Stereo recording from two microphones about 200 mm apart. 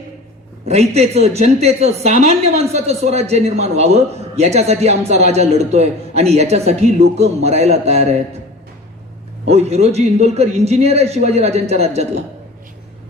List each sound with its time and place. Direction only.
0.6 s a woman's voice: 30° right (ahead or behind)
9.5 s a woman's voice: 35° right (ahead or behind)